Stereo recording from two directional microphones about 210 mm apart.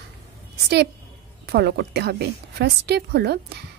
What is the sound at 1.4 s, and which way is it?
A woman's voice, 50° right (ahead or behind).